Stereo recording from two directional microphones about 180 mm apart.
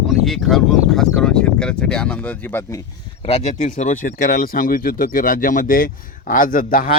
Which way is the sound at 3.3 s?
35° left (ahead or behind).